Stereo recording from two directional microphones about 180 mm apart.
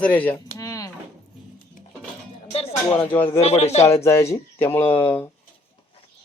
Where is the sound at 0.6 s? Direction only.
20° left (ahead or behind).